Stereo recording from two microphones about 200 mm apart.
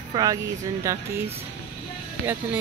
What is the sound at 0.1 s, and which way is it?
Speech, 20° right (ahead or behind).